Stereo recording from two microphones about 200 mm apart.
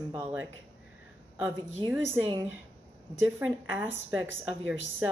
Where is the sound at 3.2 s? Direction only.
10° right (ahead or behind).